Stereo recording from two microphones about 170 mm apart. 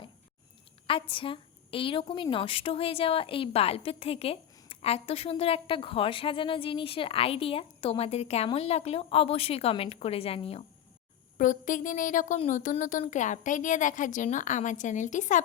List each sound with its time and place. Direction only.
0.9 s a woman's voice: 30° left (ahead or behind)
11.3 s a woman's voice: 50° left (ahead or behind)